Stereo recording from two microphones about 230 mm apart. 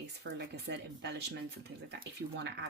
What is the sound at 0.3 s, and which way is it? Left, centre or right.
Speech, right.